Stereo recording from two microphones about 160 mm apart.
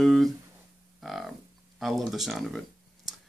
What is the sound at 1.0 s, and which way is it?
Hum, centre (ahead or behind).